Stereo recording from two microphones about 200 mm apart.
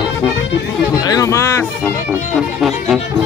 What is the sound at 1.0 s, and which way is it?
Music, 20° left (ahead or behind).